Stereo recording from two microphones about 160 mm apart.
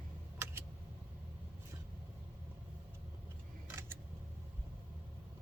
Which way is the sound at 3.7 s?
15° right (ahead or behind).